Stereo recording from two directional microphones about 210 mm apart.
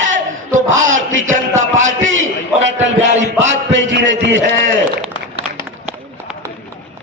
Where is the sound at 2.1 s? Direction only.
65° right (ahead or behind).